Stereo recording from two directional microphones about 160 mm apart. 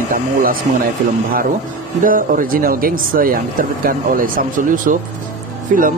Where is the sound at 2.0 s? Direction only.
60° right (ahead or behind).